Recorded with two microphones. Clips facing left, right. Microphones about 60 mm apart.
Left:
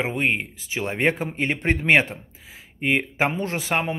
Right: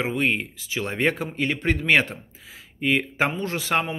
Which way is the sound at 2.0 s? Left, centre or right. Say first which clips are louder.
Even; centre.